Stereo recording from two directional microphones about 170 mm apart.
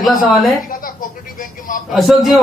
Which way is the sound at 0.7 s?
55° left (ahead or behind).